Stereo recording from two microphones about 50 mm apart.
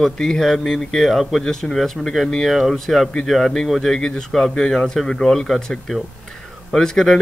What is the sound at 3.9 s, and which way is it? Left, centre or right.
A man's voice, centre.